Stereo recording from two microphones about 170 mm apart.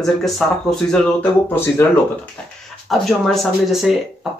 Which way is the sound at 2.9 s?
Centre (ahead or behind).